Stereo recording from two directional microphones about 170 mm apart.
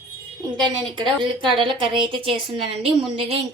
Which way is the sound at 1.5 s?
30° right (ahead or behind).